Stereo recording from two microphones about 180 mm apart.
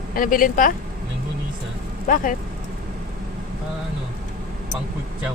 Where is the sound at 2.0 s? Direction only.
50° left (ahead or behind).